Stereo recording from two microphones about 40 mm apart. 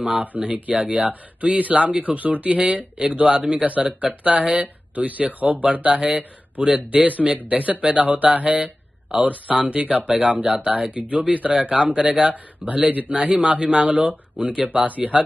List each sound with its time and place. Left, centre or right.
0.0 s speech: right
2.6 s speech: centre
3.6 s speech: right
7.4 s speech: right